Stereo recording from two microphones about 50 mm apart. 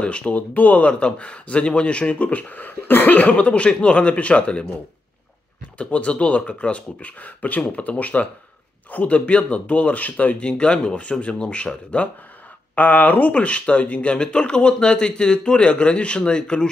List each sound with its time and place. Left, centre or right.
0.0 s speech: left
5.8 s speech: left
10.4 s speech: left